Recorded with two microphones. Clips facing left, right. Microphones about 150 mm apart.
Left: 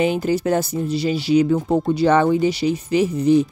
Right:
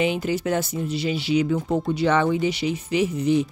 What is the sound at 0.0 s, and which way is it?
Speech, 40° left (ahead or behind).